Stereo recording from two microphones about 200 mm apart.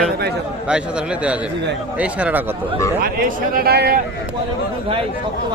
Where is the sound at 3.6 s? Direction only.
50° right (ahead or behind).